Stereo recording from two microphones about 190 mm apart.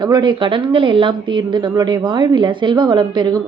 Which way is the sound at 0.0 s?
25° right (ahead or behind).